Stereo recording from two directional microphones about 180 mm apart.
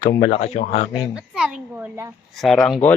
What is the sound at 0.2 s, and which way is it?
Speech, 35° left (ahead or behind).